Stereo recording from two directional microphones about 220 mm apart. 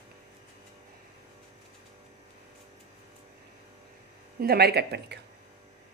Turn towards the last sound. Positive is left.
turn(degrees=-50)  # may be behind; listen again after turning